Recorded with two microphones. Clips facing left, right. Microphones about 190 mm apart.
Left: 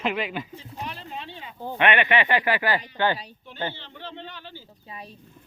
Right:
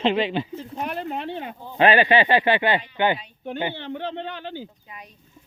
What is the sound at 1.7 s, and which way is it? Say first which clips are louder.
Speech: right 5 dB; 30° right (ahead or behind).